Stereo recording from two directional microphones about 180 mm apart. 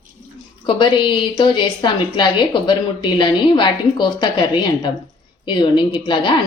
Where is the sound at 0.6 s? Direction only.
25° left (ahead or behind).